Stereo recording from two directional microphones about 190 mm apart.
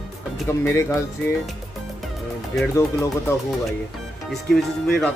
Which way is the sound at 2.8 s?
15° left (ahead or behind).